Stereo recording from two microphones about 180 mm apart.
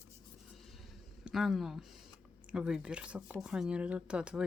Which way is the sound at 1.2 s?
Centre (ahead or behind).